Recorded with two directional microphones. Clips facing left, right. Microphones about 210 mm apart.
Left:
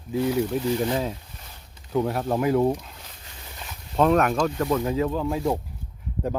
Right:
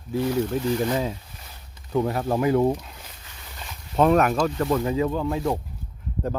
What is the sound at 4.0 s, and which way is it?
Speech, centre (ahead or behind).